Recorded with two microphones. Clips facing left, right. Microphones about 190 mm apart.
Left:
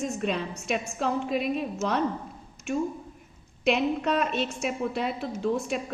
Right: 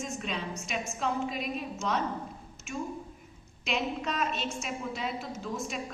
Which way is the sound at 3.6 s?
60° left (ahead or behind).